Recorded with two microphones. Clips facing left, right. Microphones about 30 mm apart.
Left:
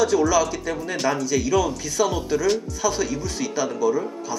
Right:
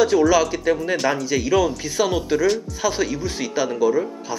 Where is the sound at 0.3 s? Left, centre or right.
Right.